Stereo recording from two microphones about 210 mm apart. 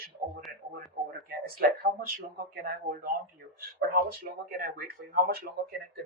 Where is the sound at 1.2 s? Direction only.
45° right (ahead or behind).